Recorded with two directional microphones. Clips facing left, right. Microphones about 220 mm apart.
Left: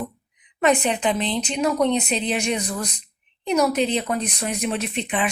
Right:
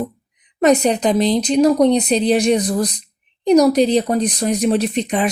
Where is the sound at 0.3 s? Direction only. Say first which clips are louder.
Right 6 dB; 40° right (ahead or behind).